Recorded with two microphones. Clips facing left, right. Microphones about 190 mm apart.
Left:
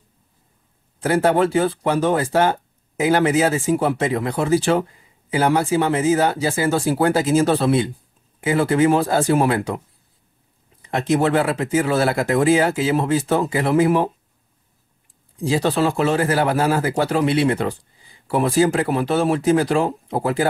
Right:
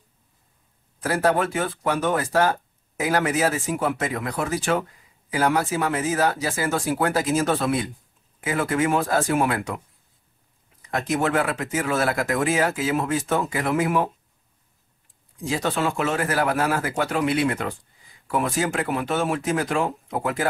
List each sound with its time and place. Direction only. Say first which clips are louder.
0.9 s speech: left 4 dB; 25° left (ahead or behind)
10.8 s speech: left 5 dB; 30° left (ahead or behind)
15.3 s speech: left 6 dB; 30° left (ahead or behind)